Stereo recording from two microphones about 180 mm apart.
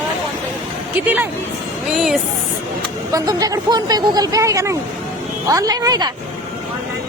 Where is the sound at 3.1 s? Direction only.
20° right (ahead or behind).